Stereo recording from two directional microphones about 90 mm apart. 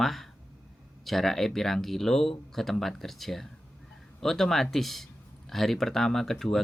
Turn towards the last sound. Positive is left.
turn(degrees=5)  # may be behind; listen again after turning